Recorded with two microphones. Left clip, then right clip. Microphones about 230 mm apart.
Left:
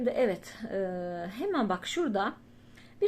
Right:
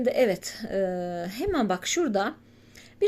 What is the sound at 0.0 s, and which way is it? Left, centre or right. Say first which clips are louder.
A woman's voice: right 5 dB; right.